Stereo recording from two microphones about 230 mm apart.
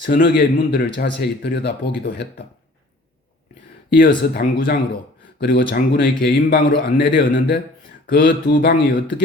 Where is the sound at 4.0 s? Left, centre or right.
Left.